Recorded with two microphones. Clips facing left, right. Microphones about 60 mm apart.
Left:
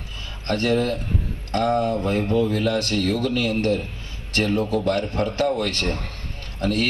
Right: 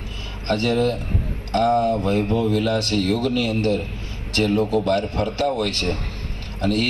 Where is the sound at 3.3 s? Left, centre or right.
Left.